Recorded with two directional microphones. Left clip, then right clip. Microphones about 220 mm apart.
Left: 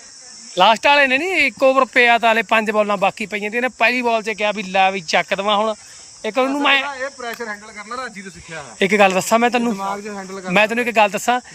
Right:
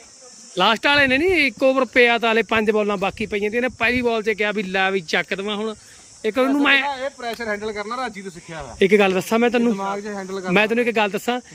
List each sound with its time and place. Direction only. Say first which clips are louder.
0.5 s speech: left 4 dB; 10° right (ahead or behind)
7.4 s speech: right 4 dB; 40° right (ahead or behind)
7.8 s speech: right 2 dB; 15° right (ahead or behind)
9.7 s speech: left 1 dB; 30° right (ahead or behind)
10.4 s speech: left 2 dB; 10° right (ahead or behind)